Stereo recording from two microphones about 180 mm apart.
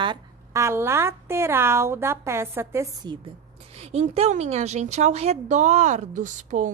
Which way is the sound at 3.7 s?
35° right (ahead or behind).